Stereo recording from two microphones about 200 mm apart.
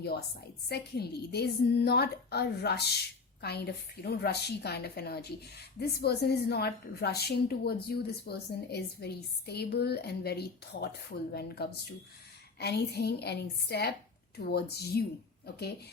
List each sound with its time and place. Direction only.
0.7 s a woman's voice: 55° left (ahead or behind)
4.0 s a woman's voice: 55° left (ahead or behind)